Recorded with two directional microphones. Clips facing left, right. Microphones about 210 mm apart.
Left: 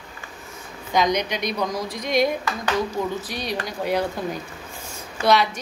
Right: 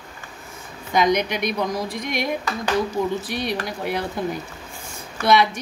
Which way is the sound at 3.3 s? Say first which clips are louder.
Right 3 dB; 55° right (ahead or behind).